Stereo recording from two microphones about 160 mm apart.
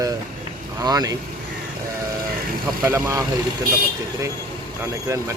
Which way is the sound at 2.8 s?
15° right (ahead or behind).